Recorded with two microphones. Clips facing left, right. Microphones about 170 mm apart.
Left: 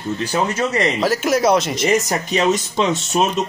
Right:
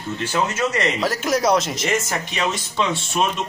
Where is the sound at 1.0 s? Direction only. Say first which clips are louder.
Left 4 dB; centre (ahead or behind).